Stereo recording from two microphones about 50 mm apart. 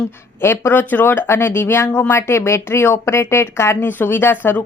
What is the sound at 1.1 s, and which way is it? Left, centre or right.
Speech, left.